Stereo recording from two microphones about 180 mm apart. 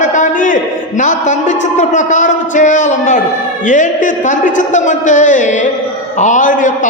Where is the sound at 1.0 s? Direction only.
45° left (ahead or behind).